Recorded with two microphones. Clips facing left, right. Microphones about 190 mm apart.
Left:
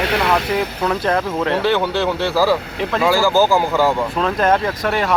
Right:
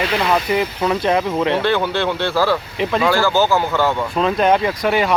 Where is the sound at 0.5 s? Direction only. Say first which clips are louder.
Right 1 dB; 5° right (ahead or behind).